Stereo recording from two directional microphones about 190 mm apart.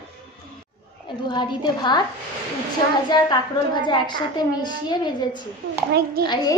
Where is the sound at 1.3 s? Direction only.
25° left (ahead or behind).